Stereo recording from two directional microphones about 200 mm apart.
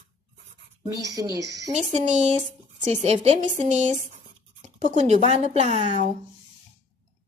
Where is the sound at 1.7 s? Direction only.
35° right (ahead or behind).